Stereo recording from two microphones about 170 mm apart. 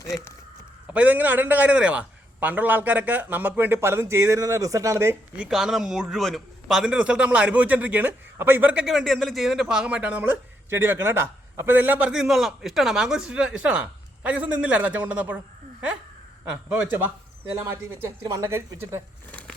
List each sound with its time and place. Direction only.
0.0 s speech: 15° left (ahead or behind)
0.9 s a man's voice: 10° right (ahead or behind)
5.5 s a man's voice: centre (ahead or behind)
16.6 s a man's voice: 10° right (ahead or behind)
19.3 s a sound: 10° left (ahead or behind)